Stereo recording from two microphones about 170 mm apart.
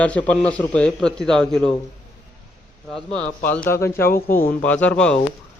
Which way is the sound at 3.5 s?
10° left (ahead or behind).